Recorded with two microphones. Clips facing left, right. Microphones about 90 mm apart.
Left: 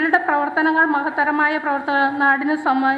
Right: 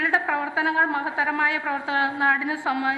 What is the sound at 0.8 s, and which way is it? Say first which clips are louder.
A woman's voice: left 6 dB; 25° left (ahead or behind).